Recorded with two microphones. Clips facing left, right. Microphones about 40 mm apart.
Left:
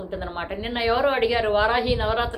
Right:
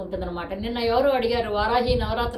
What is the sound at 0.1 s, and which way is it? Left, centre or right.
A woman's voice, left.